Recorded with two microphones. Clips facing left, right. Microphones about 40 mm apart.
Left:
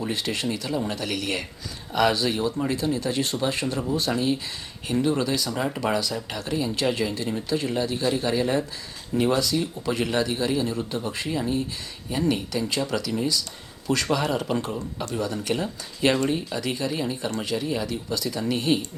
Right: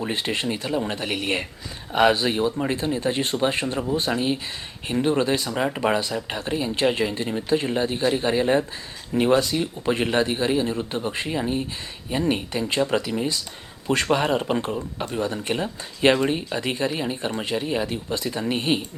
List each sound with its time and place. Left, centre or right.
0.0 s speech: right
5.5 s speech: right